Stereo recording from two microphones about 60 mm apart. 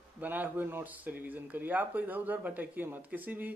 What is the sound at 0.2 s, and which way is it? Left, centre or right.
A man's voice, right.